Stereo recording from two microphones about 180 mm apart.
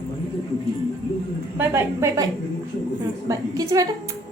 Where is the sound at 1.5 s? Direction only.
15° right (ahead or behind).